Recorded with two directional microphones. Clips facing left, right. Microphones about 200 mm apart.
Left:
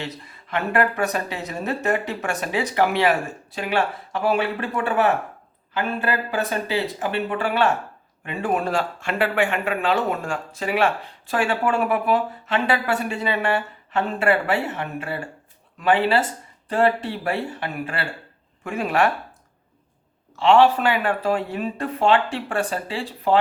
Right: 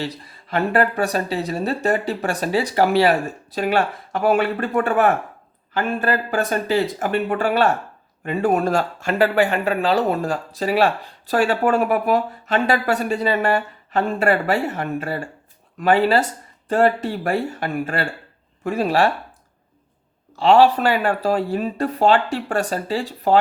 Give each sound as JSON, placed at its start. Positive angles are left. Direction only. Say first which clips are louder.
{"t": 0.0, "sound": "speech", "louder": "right 4 dB", "side_deg": -35}
{"t": 20.3, "sound": "speech", "louder": "right 2 dB", "side_deg": -40}